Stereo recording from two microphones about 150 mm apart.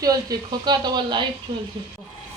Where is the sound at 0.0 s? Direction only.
25° right (ahead or behind).